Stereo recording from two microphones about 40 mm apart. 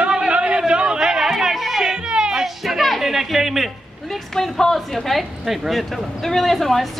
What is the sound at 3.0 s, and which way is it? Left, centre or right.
Speech, centre.